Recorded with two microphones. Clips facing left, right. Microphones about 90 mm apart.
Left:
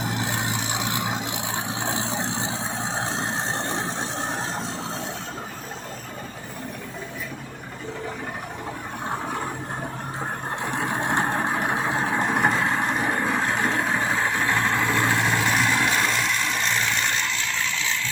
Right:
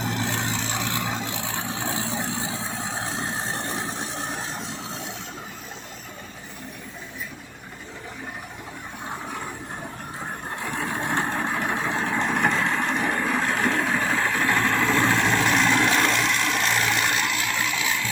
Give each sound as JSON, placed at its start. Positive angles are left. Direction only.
{"t": 0.0, "sound": "vehicle", "side_deg": 15}
{"t": 10.6, "sound": "vehicle", "side_deg": 25}
{"t": 12.6, "sound": "vehicle", "side_deg": 35}
{"t": 13.0, "sound": "vehicle", "side_deg": 20}